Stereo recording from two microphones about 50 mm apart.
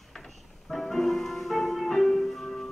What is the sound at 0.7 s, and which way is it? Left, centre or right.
Music, centre.